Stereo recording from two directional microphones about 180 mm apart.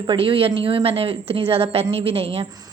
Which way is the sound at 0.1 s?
30° right (ahead or behind).